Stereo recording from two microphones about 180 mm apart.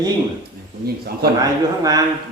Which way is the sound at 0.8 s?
60° right (ahead or behind).